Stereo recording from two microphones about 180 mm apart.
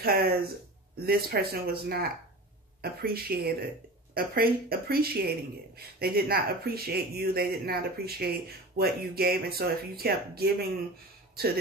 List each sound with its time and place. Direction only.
0.0 s speech: 60° right (ahead or behind)